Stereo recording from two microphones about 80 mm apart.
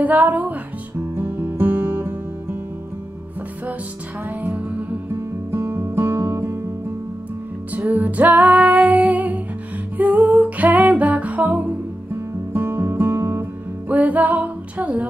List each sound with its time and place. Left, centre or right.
0.0 s music: right
4.5 s music: right
7.7 s music: centre
12.5 s music: right
13.8 s music: centre